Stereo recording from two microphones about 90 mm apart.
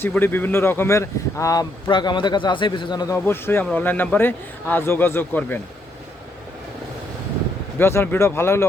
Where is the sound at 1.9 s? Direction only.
60° left (ahead or behind).